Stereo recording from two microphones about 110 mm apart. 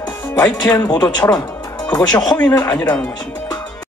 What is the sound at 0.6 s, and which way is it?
Speech, 35° left (ahead or behind).